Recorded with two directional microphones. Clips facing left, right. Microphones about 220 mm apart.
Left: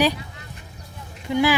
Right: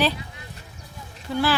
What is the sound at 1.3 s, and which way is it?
Speech, 15° left (ahead or behind).